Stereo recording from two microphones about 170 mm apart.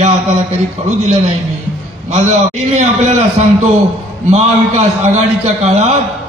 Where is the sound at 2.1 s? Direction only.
40° right (ahead or behind).